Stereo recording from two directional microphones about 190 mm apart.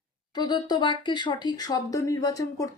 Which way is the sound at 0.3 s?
25° left (ahead or behind).